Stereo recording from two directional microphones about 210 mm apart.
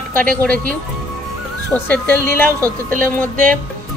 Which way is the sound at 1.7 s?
10° left (ahead or behind).